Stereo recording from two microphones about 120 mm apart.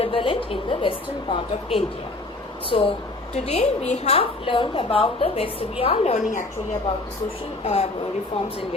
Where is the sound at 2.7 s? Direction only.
50° left (ahead or behind); by 6.5 s 80° left.